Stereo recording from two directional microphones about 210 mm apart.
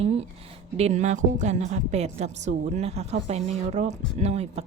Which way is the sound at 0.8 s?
30° right (ahead or behind).